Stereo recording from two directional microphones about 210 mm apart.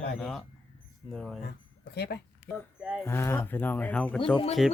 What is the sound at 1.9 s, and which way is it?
Speech, 50° left (ahead or behind).